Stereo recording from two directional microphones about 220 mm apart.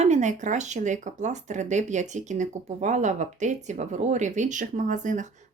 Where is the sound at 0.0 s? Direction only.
30° right (ahead or behind).